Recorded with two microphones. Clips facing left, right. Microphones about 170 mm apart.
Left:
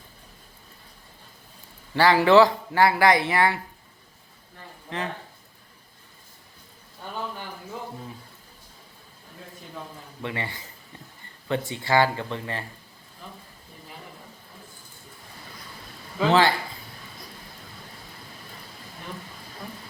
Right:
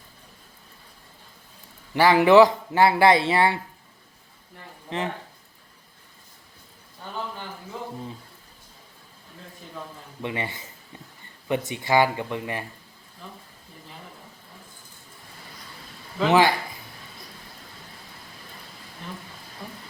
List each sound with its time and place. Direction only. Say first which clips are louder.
1.9 s speech: right 1 dB; 15° right (ahead or behind)
4.9 s speech: right 3 dB; 20° right (ahead or behind)
10.2 s speech: right 2 dB; 20° right (ahead or behind)
16.2 s speech: right 1 dB; 15° right (ahead or behind)